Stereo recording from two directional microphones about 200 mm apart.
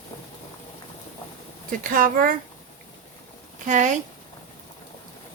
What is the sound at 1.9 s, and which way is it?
Speech, 45° right (ahead or behind).